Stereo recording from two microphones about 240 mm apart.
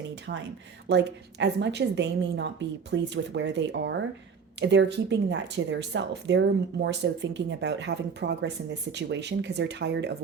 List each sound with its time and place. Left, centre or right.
0.9 s speech: right